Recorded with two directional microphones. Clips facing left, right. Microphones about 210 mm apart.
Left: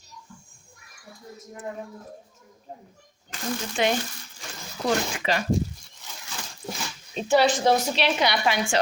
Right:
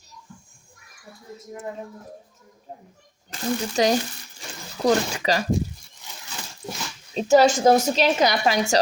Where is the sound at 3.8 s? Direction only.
40° right (ahead or behind).